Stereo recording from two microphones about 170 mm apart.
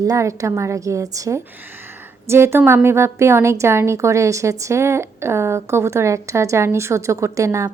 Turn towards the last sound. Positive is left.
turn(degrees=-15)  # may be behind; listen again after turning